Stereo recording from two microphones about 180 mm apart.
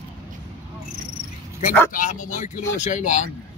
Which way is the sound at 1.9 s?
50° left (ahead or behind).